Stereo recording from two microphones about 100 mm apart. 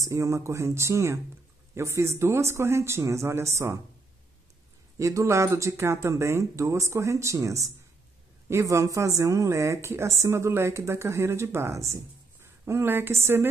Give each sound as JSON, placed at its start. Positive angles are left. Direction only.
{"t": 0.0, "sound": "speech", "side_deg": -30}
{"t": 4.9, "sound": "a woman's voice", "side_deg": -30}